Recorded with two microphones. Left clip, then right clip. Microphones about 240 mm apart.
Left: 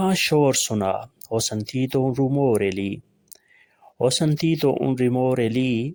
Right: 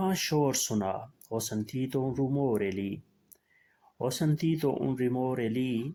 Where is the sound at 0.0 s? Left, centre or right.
Left.